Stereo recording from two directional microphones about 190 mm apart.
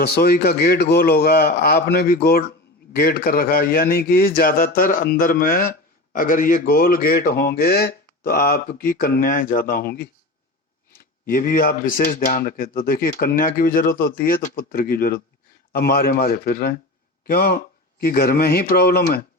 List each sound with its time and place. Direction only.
0.0 s a man's voice: 55° left (ahead or behind)
11.3 s a man's voice: 45° left (ahead or behind)